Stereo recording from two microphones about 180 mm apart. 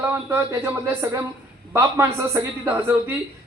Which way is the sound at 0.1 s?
15° right (ahead or behind).